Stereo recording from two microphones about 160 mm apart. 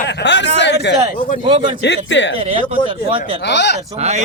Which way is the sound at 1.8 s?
90° left.